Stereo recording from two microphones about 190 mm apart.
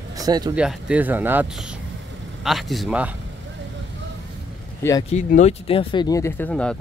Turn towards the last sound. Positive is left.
turn(degrees=5)  # may be behind; listen again after turning